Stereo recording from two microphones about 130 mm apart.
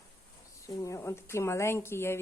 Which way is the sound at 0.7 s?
25° left (ahead or behind).